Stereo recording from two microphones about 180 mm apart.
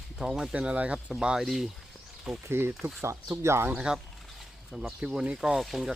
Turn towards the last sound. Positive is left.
turn(degrees=0)  # may be behind; listen again after turning